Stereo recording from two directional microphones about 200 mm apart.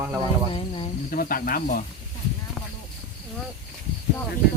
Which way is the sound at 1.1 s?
45° left (ahead or behind).